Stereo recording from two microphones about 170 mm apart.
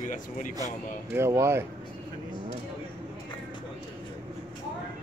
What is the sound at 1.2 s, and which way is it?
Speech, 15° right (ahead or behind).